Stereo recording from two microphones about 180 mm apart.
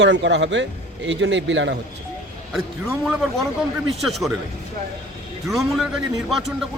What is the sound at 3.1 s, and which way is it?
A man's voice, centre (ahead or behind).